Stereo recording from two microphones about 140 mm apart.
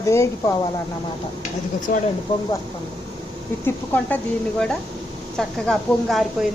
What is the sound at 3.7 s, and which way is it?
Speech, 15° left (ahead or behind).